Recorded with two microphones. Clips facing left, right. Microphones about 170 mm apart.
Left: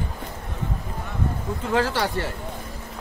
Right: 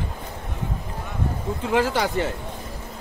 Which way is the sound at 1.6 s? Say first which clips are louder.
Right 1 dB; 15° right (ahead or behind).